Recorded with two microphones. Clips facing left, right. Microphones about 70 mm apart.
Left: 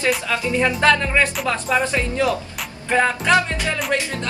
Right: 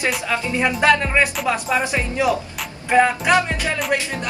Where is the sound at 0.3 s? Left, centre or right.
Centre.